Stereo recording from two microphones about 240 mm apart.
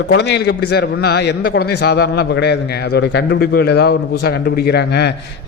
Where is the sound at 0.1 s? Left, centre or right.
Left.